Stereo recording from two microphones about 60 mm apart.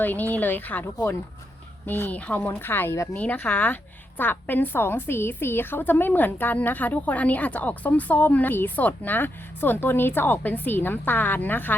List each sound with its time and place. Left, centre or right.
0.0 s a woman's voice: left
1.9 s speech: left
2.5 s a woman's voice: left